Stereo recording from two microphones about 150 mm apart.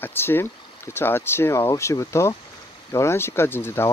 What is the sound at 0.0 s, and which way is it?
Speech, 15° left (ahead or behind).